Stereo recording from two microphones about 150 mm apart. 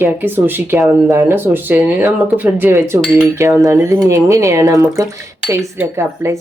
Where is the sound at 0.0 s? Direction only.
15° right (ahead or behind).